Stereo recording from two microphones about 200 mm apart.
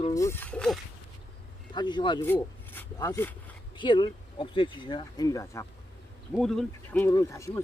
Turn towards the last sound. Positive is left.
turn(degrees=15)  # may be behind; listen again after turning